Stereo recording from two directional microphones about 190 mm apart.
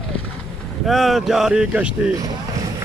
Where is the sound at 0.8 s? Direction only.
Centre (ahead or behind).